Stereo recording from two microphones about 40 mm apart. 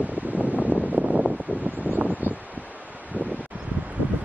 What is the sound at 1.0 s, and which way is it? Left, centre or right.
Wind noise, right.